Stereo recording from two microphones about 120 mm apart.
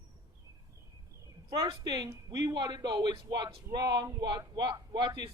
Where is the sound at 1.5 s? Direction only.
50° right (ahead or behind).